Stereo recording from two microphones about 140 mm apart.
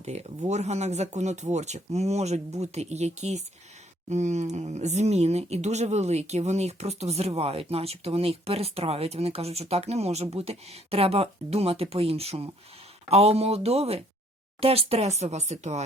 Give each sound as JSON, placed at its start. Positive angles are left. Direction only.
{"t": 0.0, "sound": "speech", "side_deg": -50}